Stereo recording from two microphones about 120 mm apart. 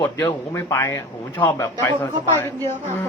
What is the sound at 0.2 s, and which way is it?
Speech, 20° left (ahead or behind).